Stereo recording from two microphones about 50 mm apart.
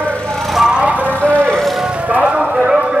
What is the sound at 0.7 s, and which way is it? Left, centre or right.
Vehicle, right.